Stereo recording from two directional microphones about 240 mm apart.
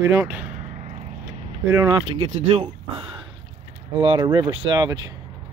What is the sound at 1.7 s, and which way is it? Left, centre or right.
Speech, centre.